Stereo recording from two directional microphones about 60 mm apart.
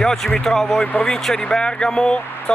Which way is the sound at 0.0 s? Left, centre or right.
Centre.